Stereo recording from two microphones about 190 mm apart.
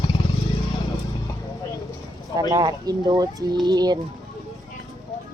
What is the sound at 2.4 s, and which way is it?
Speech, 20° right (ahead or behind).